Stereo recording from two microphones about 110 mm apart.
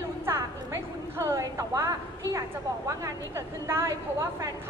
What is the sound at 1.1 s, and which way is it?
Speech, 30° right (ahead or behind).